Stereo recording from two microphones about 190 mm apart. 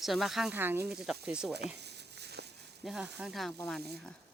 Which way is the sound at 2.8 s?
Centre (ahead or behind).